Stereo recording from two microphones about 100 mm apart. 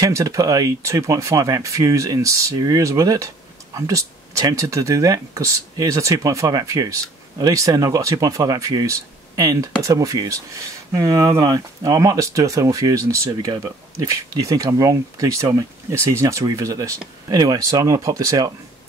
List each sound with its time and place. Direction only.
0.0 s speech: 35° right (ahead or behind)